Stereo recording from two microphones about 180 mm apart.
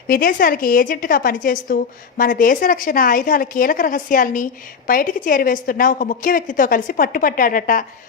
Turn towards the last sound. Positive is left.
turn(degrees=50)  # may be behind; listen again after turning